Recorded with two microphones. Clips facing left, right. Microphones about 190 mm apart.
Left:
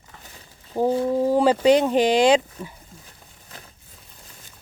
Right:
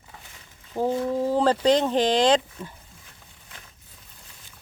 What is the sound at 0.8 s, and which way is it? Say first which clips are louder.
Speech: left 4 dB; 30° left (ahead or behind).